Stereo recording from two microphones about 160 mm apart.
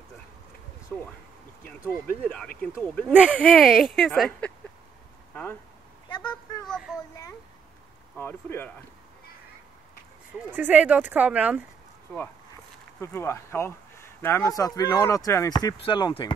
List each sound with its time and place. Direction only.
0.9 s speech: 5° left (ahead or behind)
3.1 s speech: 10° right (ahead or behind)
3.3 s speech: 10° left (ahead or behind)
5.3 s speech: 10° left (ahead or behind)
6.0 s a sound: 30° left (ahead or behind)
6.6 s speech: centre (ahead or behind)
8.2 s speech: 15° left (ahead or behind)
10.3 s speech: 10° right (ahead or behind)
13.0 s speech: 15° left (ahead or behind); by 16.3 s 30° left (ahead or behind)